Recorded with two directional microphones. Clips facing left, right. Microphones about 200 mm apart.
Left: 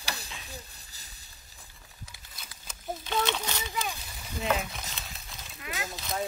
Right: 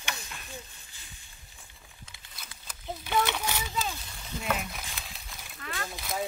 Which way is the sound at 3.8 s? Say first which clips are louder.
Even; 10° left (ahead or behind).